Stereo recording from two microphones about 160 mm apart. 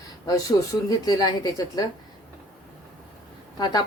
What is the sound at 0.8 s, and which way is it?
Speech, 25° left (ahead or behind).